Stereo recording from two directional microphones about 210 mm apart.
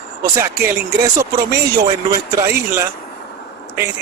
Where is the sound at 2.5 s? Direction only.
10° right (ahead or behind).